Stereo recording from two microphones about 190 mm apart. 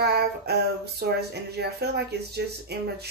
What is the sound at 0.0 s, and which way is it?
Female singing, 60° right (ahead or behind).